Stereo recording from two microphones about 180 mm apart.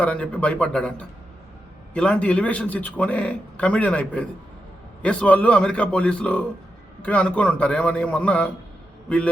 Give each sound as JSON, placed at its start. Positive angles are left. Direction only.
{"t": 0.0, "sound": "a man's voice", "side_deg": 5}